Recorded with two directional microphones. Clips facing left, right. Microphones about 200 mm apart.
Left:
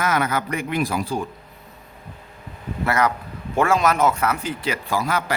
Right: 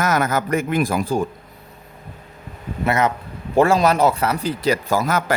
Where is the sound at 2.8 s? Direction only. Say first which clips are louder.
Right 2 dB; 20° right (ahead or behind).